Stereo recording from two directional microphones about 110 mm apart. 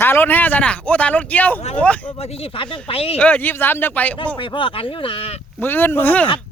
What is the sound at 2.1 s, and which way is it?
Speech, 65° left (ahead or behind).